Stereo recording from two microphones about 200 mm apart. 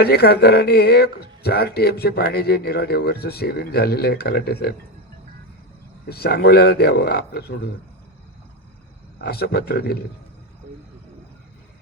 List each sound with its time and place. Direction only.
0.0 s speech: 55° left (ahead or behind)
6.1 s speech: 50° left (ahead or behind)
9.2 s speech: 55° left (ahead or behind)